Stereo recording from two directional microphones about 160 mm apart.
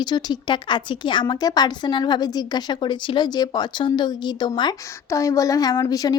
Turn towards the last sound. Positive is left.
turn(degrees=25)  # may be behind; listen again after turning